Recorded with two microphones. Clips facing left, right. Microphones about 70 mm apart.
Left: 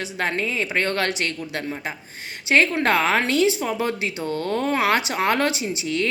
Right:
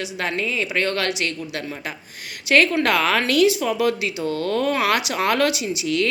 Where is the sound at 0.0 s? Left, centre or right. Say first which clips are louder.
Even; left.